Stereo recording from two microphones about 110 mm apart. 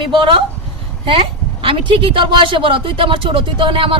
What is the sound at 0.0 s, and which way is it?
Speech, 50° right (ahead or behind).